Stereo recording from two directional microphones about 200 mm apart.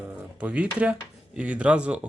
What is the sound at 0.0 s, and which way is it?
Speech, 5° right (ahead or behind).